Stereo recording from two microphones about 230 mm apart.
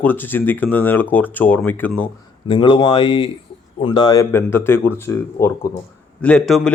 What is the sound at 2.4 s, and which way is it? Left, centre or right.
Speech, left.